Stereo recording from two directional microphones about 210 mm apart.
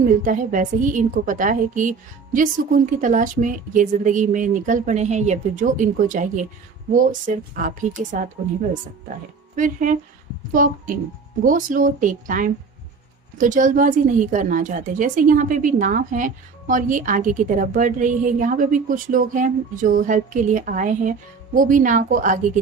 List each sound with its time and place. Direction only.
0.1 s a woman's voice: 40° right (ahead or behind)
9.6 s a woman's voice: 40° right (ahead or behind)